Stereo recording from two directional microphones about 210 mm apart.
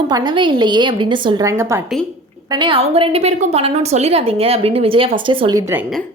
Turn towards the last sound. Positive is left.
turn(degrees=-25)  # may be behind; listen again after turning